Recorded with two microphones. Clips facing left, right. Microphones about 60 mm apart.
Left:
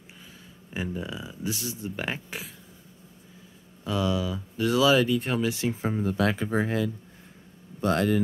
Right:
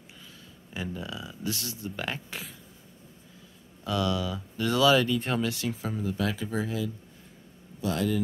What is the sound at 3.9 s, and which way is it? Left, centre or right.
Speech, centre.